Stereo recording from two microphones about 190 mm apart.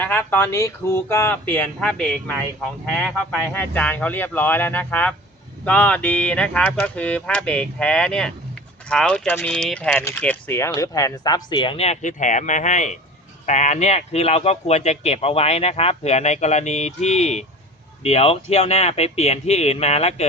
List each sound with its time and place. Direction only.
0.0 s speech: 10° left (ahead or behind); by 20.2 s 35° left (ahead or behind)